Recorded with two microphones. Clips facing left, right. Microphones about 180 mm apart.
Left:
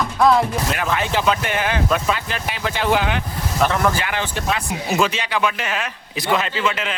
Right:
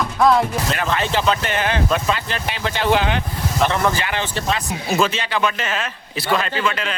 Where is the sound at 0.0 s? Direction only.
Centre (ahead or behind).